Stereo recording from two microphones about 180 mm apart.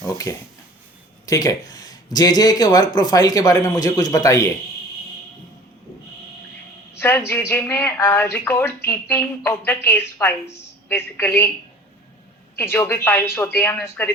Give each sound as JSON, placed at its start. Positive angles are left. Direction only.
{"t": 0.0, "sound": "speech", "side_deg": 20}
{"t": 7.0, "sound": "a woman's voice", "side_deg": 15}
{"t": 12.5, "sound": "a woman's voice", "side_deg": 15}